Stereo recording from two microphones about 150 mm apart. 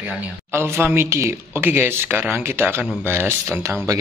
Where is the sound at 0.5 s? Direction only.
15° right (ahead or behind).